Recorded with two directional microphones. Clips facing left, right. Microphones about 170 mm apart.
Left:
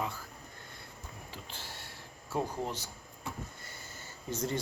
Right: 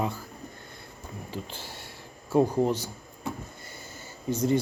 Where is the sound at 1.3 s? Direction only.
15° right (ahead or behind).